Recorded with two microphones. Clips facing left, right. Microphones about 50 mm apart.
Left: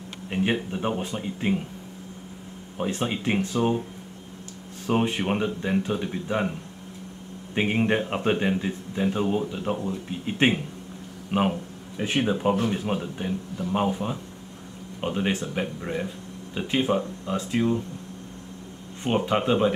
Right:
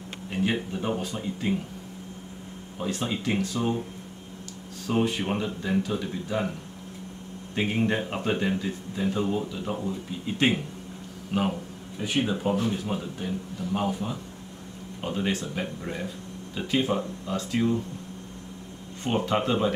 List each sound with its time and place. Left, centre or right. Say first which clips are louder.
0.3 s speech: left 2 dB; left
2.8 s speech: left 2 dB; left
4.8 s speech: left 2 dB; left
7.5 s speech: left 3 dB; left
19.0 s speech: left 2 dB; centre